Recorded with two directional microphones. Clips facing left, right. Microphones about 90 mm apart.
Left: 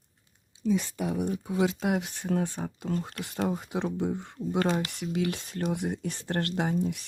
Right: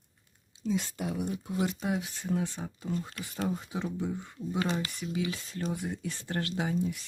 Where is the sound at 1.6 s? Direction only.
85° left; by 4.3 s 70° left (ahead or behind).